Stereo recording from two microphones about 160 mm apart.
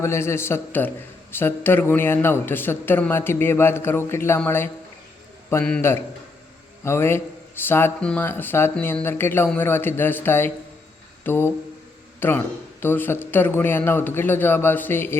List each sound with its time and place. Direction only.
0.0 s a man's voice: 15° left (ahead or behind)
6.8 s a man's voice: 15° left (ahead or behind)